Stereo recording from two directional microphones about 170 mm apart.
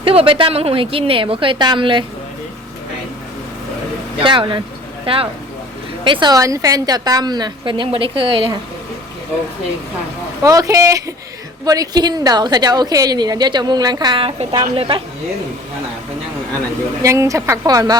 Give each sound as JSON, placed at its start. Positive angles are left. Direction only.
{"t": 0.0, "sound": "a woman's voice", "side_deg": -35}
{"t": 4.2, "sound": "a woman's voice", "side_deg": -30}
{"t": 10.4, "sound": "a woman's voice", "side_deg": -20}
{"t": 17.0, "sound": "a woman's voice", "side_deg": -20}